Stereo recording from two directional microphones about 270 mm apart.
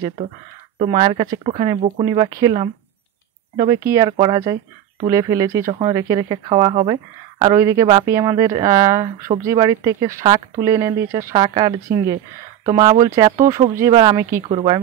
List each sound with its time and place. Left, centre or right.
0.7 s speech: centre